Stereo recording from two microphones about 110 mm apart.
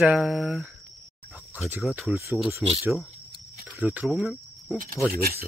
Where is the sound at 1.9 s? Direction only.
15° right (ahead or behind).